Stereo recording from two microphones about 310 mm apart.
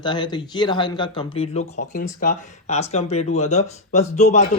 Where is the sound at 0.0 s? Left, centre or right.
Centre.